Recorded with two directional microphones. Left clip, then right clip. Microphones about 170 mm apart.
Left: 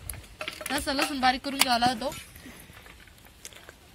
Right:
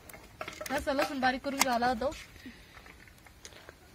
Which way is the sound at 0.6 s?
15° right (ahead or behind).